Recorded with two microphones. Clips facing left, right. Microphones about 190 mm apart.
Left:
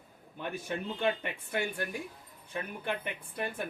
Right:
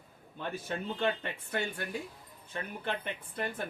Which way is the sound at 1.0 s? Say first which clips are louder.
Left 2 dB; 15° left (ahead or behind).